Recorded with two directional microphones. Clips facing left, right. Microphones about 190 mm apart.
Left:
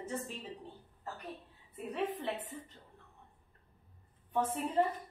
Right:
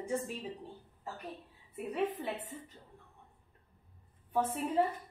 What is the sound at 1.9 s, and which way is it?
Speech, 10° right (ahead or behind).